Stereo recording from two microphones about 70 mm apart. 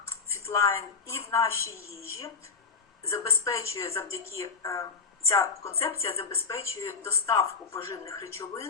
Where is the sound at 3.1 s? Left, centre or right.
Left.